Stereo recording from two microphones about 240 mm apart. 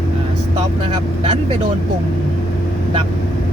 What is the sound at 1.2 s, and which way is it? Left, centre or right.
Speech, right.